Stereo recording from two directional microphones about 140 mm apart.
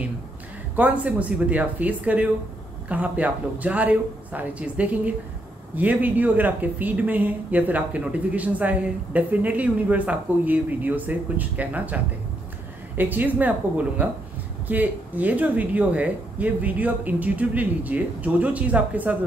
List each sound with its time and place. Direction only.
0.7 s speech: 10° right (ahead or behind)